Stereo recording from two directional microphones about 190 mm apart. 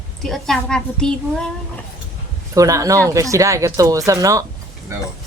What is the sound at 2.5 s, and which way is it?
Speech, 15° right (ahead or behind).